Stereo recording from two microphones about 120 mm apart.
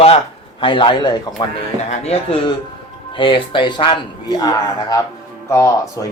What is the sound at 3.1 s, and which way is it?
Speech, 45° left (ahead or behind).